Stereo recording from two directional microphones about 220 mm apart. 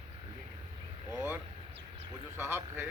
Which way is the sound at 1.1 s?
5° right (ahead or behind).